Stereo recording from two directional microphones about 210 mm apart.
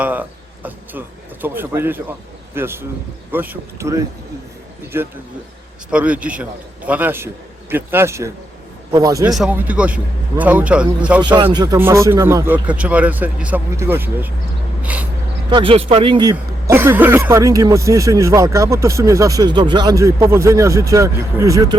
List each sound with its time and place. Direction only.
0.0 s speech: 10° right (ahead or behind)
5.9 s speech: 5° right (ahead or behind)
9.2 s speech: 5° right (ahead or behind)
11.3 s speech: 20° right (ahead or behind)
14.8 s a sound: 5° right (ahead or behind)
15.4 s speech: 25° right (ahead or behind)